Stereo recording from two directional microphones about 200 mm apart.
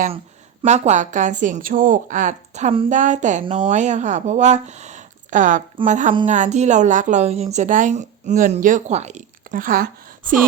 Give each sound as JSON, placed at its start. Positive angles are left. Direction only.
{"t": 0.6, "sound": "a woman's voice", "side_deg": -35}